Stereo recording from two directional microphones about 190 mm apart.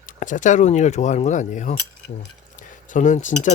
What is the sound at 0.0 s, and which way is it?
Speech, 40° left (ahead or behind).